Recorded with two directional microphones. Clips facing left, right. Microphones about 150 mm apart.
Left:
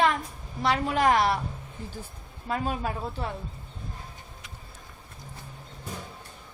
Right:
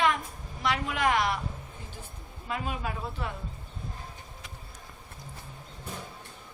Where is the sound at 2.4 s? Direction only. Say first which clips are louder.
Left 4 dB; 40° left (ahead or behind).